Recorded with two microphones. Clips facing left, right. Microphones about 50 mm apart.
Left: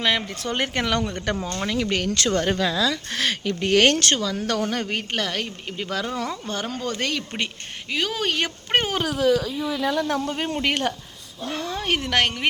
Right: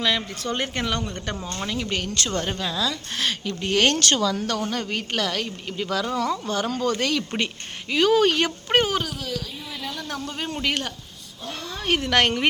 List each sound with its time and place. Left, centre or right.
0.0 s a woman's voice: left
4.1 s speech: centre
4.4 s speech: left
5.1 s speech: left
7.2 s speech: centre
8.7 s speech: left
10.0 s speech: centre